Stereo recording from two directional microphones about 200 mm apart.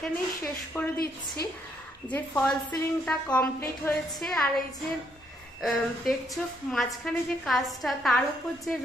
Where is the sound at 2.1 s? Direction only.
10° left (ahead or behind).